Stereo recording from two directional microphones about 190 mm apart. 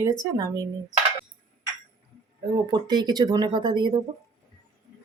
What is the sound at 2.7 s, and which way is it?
Speech, 20° right (ahead or behind).